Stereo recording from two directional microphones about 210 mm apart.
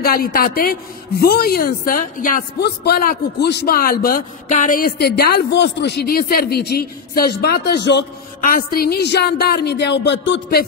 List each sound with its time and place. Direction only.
0.0 s a woman's voice: 45° left (ahead or behind)
8.4 s a woman's voice: 40° left (ahead or behind); by 10.6 s 60° left (ahead or behind)